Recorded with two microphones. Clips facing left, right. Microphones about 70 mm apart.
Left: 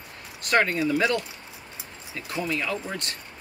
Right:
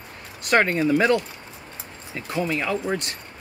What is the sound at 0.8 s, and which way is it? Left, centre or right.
Speech, right.